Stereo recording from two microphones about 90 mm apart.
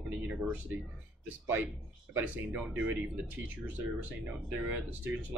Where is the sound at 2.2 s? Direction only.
15° right (ahead or behind).